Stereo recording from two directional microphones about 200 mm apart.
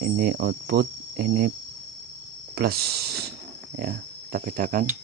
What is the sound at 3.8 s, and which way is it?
Speech, 45° right (ahead or behind).